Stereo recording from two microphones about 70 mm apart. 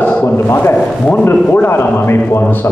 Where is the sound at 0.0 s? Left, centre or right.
Centre.